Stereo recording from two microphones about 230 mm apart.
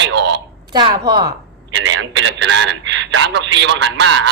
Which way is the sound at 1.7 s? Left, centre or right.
Right.